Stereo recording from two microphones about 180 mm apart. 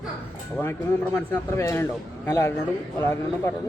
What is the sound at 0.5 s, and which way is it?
A man's voice, 15° left (ahead or behind).